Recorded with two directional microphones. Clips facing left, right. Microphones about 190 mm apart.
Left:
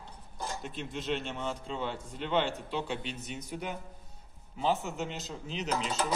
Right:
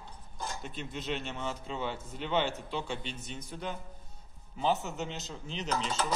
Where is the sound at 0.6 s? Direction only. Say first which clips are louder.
Left 2 dB; centre (ahead or behind).